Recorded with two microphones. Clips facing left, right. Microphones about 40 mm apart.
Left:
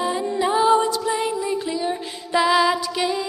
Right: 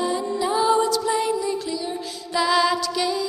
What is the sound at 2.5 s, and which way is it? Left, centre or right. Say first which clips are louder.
Music: left 1 dB; centre.